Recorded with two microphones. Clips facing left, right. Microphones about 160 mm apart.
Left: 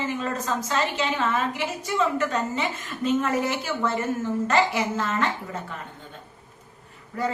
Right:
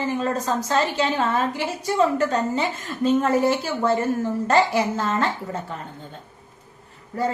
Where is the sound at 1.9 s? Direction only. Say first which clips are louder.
Right 4 dB; 35° right (ahead or behind).